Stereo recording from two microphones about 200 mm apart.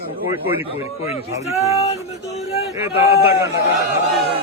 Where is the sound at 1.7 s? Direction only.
30° left (ahead or behind).